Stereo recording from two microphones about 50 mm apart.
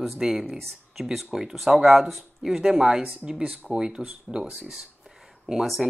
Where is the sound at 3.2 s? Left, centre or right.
Centre.